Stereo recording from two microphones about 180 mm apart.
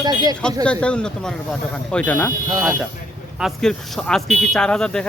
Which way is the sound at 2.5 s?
20° right (ahead or behind).